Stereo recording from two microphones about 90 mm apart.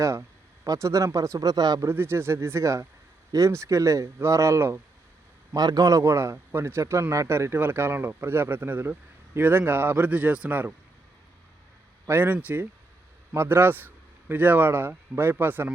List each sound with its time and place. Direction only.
0.0 s speech: 35° right (ahead or behind)
1.9 s speech: 25° right (ahead or behind)
5.5 s speech: 45° right (ahead or behind); by 10.8 s 20° right (ahead or behind)
12.0 s a man's voice: 20° right (ahead or behind)